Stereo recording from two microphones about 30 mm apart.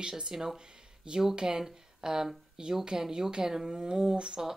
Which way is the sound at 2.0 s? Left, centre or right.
Right.